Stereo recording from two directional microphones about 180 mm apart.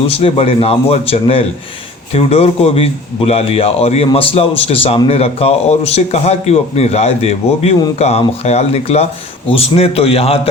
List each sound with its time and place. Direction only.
0.1 s a man's voice: 35° left (ahead or behind)